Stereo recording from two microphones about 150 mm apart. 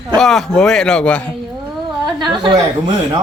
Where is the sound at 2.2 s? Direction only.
30° right (ahead or behind).